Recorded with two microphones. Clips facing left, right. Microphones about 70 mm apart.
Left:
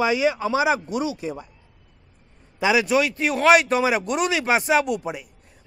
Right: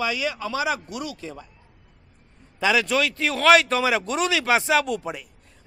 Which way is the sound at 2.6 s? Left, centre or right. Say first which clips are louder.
Left 2 dB; centre.